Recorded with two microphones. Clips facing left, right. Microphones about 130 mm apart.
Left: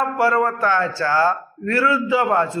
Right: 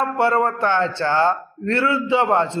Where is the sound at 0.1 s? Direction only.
25° right (ahead or behind).